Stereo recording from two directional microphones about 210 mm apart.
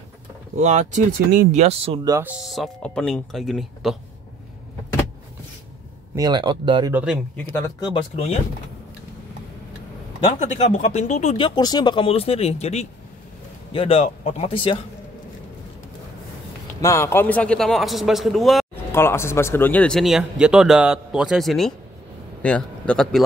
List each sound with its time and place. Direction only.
0.6 s speech: 35° right (ahead or behind)
2.0 s speech: 10° right (ahead or behind)
6.1 s speech: 20° right (ahead or behind)
6.9 s speech: 5° right (ahead or behind)
7.3 s speech: 10° left (ahead or behind); by 8.4 s 25° left (ahead or behind)
10.7 s speech: 30° left (ahead or behind)
16.8 s speech: 10° left (ahead or behind)
18.9 s a man's voice: 10° left (ahead or behind)